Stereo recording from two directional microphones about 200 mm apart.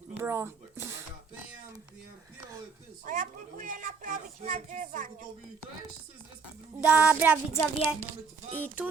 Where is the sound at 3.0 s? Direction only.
40° right (ahead or behind).